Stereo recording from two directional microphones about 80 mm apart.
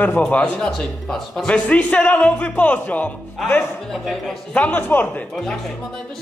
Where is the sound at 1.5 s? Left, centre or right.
Centre.